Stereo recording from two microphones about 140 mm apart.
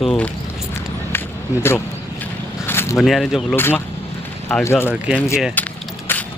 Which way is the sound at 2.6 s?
15° left (ahead or behind).